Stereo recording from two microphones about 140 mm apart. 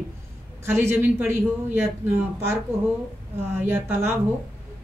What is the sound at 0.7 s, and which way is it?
A woman's voice, 15° right (ahead or behind).